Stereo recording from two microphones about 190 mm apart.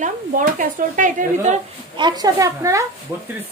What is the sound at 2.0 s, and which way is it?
Speech, 20° right (ahead or behind).